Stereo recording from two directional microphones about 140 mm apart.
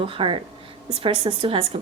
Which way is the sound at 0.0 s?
40° right (ahead or behind).